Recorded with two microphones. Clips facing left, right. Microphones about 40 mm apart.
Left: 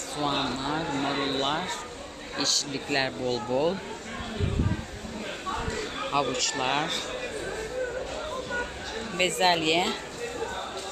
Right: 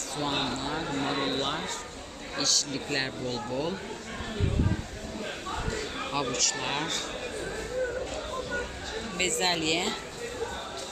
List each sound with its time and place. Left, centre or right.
0.2 s speech: centre
5.5 s a sound: centre
9.1 s speech: centre